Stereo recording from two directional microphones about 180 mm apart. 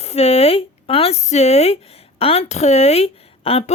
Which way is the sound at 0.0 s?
35° left (ahead or behind).